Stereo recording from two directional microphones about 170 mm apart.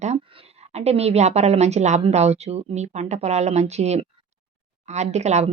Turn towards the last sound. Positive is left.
turn(degrees=-40)  # may be behind; listen again after turning